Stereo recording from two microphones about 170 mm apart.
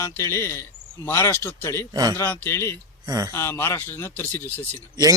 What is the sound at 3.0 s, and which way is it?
Speech, 20° right (ahead or behind).